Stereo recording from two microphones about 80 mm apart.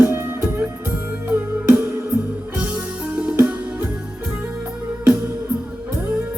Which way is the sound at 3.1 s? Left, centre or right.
Centre.